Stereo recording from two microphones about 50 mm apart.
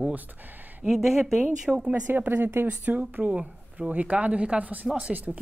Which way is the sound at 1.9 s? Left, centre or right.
Right.